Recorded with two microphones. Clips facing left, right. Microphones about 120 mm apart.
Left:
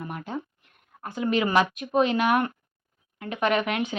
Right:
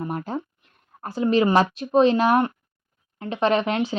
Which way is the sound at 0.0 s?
35° right (ahead or behind).